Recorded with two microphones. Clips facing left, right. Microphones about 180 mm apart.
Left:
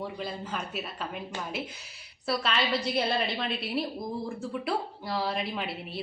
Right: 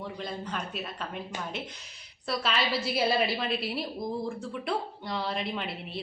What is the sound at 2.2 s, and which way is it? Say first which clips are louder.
A woman's voice: left 1 dB; centre (ahead or behind).